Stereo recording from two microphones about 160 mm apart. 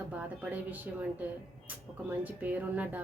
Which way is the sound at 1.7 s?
10° right (ahead or behind).